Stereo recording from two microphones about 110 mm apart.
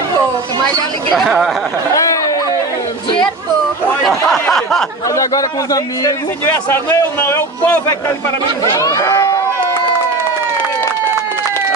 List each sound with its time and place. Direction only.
1.1 s speech: centre (ahead or behind)
4.0 s snicker: centre (ahead or behind)
5.0 s a man's voice: 30° left (ahead or behind)
8.7 s speech: 30° left (ahead or behind)